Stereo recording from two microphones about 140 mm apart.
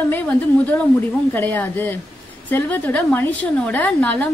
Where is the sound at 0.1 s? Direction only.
10° left (ahead or behind).